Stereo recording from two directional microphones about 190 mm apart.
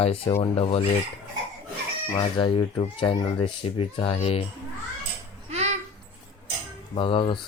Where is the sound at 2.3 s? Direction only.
25° left (ahead or behind).